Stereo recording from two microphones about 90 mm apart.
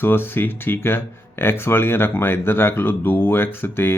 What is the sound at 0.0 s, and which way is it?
Speech, 25° left (ahead or behind).